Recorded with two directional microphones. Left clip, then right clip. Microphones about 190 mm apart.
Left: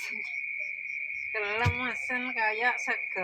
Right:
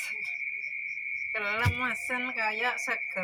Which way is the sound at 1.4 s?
30° left (ahead or behind).